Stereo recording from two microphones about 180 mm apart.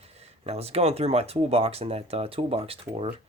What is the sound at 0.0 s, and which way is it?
Speech, 35° right (ahead or behind).